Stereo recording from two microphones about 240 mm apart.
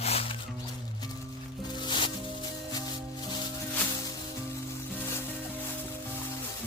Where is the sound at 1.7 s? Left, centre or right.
Centre.